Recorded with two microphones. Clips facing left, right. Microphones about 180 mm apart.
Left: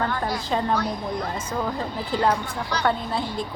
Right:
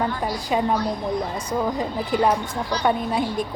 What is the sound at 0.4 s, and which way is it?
Speech, 10° right (ahead or behind).